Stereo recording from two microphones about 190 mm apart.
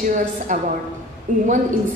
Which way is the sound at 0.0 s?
40° right (ahead or behind).